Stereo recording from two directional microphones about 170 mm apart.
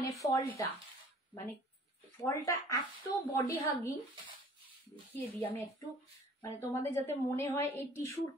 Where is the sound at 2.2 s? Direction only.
20° left (ahead or behind).